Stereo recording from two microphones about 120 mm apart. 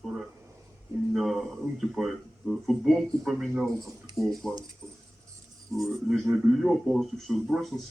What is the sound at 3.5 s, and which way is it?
Speech, 15° right (ahead or behind).